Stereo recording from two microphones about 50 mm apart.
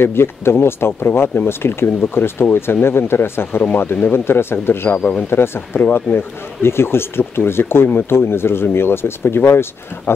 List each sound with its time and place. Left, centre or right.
0.0 s speech: left